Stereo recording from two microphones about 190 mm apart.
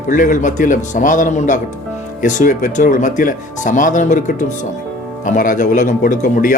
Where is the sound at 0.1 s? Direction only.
45° left (ahead or behind).